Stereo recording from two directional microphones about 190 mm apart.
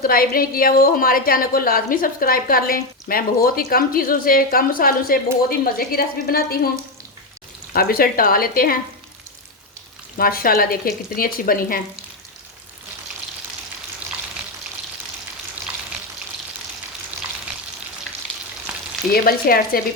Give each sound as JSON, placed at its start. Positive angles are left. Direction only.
{"t": 0.0, "sound": "a woman's voice", "side_deg": 50}
{"t": 7.7, "sound": "a woman's voice", "side_deg": 50}
{"t": 10.2, "sound": "a woman's voice", "side_deg": 50}
{"t": 19.1, "sound": "a woman's voice", "side_deg": 50}